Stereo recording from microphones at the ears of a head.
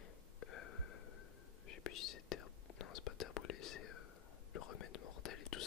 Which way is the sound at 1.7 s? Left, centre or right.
Left.